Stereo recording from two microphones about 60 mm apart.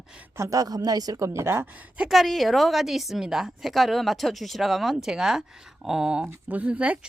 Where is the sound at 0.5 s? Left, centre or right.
Right.